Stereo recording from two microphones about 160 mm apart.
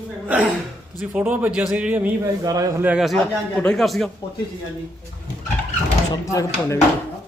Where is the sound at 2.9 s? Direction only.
Centre (ahead or behind).